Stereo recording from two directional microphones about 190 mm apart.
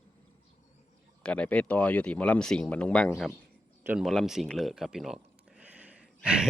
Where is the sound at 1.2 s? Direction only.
5° left (ahead or behind).